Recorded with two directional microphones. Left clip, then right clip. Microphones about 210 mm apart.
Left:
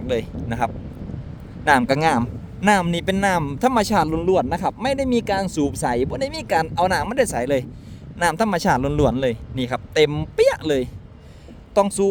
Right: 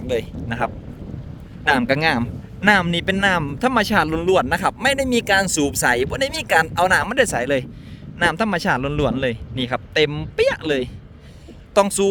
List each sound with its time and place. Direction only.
0.1 s a man's voice: 5° left (ahead or behind)
4.1 s a man's voice: 5° right (ahead or behind); by 10.8 s 15° left (ahead or behind)
11.7 s speech: centre (ahead or behind)